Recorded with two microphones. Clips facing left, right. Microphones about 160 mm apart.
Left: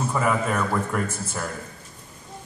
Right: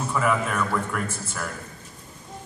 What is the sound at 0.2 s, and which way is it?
Speech, 40° left (ahead or behind).